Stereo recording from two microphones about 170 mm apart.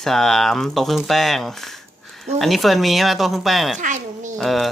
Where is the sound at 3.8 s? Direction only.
45° right (ahead or behind).